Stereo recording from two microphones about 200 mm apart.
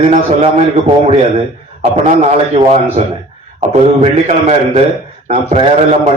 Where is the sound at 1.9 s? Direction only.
30° right (ahead or behind).